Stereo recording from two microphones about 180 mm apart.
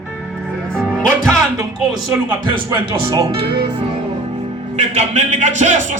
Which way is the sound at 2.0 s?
15° right (ahead or behind).